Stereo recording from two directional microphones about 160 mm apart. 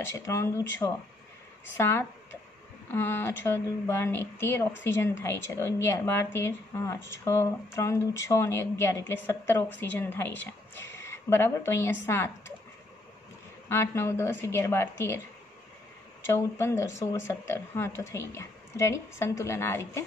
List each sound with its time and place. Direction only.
0.0 s speech: 15° left (ahead or behind)
13.7 s speech: 15° left (ahead or behind)
16.3 s speech: 15° left (ahead or behind)